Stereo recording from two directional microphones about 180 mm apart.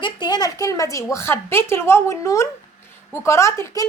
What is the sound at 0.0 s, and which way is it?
A woman's voice, 25° left (ahead or behind).